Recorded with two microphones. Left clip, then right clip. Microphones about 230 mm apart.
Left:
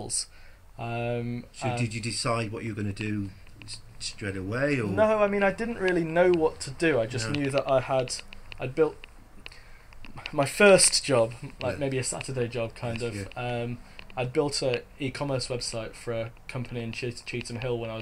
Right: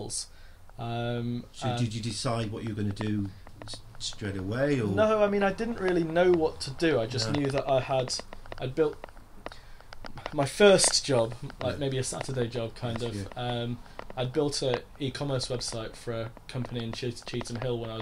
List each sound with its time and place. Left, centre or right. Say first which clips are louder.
0.0 s speech: left 3 dB; centre
1.9 s speech: left 3 dB; centre
4.2 s speech: left 1 dB; centre
4.9 s speech: left 2 dB; centre
10.0 s speech: left 2 dB; centre